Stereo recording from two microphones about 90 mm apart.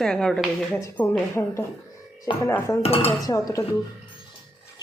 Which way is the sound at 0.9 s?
20° left (ahead or behind).